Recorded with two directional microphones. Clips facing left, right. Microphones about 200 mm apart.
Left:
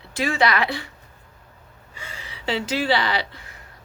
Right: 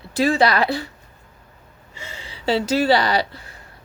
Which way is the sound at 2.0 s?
25° right (ahead or behind).